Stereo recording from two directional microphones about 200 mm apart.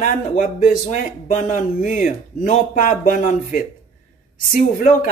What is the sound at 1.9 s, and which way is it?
Speech, 40° left (ahead or behind).